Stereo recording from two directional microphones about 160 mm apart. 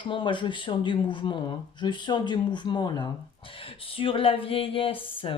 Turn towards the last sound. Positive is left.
turn(degrees=30)  # may be behind; listen again after turning